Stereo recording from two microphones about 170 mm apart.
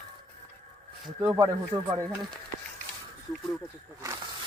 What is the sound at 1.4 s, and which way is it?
Speech, 20° right (ahead or behind).